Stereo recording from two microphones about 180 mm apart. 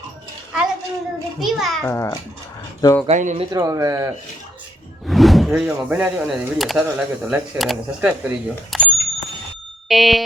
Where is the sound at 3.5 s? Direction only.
20° right (ahead or behind).